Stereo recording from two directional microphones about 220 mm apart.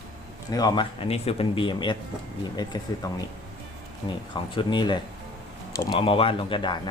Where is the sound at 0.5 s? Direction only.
20° left (ahead or behind).